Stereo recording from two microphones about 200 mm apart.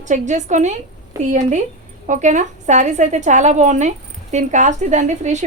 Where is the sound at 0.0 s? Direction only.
35° right (ahead or behind).